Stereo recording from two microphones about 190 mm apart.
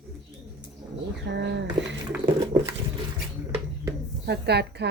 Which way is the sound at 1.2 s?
65° right (ahead or behind).